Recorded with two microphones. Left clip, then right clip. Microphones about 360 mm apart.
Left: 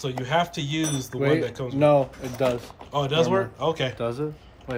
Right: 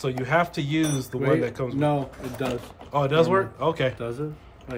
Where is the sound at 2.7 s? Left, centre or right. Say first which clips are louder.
Right 2 dB; centre.